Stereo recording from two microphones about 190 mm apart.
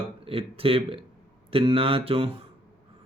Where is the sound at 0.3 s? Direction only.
30° right (ahead or behind).